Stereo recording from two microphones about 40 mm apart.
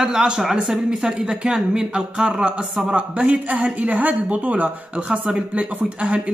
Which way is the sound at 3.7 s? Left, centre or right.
Right.